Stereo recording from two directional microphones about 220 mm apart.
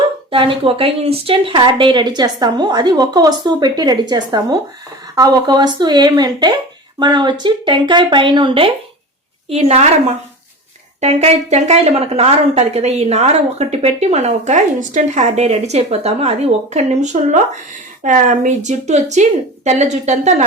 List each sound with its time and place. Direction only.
0.3 s a woman's voice: 25° right (ahead or behind)